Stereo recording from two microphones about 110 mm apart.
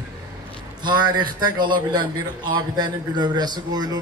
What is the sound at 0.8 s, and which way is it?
Speech, 45° right (ahead or behind).